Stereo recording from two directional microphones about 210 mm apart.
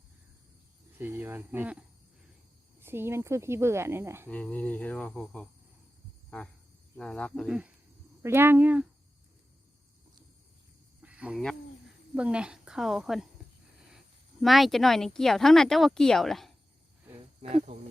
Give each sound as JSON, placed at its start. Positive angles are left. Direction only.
{"t": 0.9, "sound": "speech", "side_deg": -10}
{"t": 2.8, "sound": "speech", "side_deg": -10}
{"t": 4.3, "sound": "cricket", "side_deg": 5}
{"t": 6.9, "sound": "speech", "side_deg": 5}
{"t": 11.0, "sound": "speech", "side_deg": -5}
{"t": 14.4, "sound": "speech", "side_deg": 0}
{"t": 17.4, "sound": "speech", "side_deg": -25}